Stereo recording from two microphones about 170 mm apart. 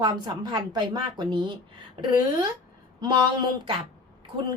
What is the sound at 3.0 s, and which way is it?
Speech, 25° right (ahead or behind).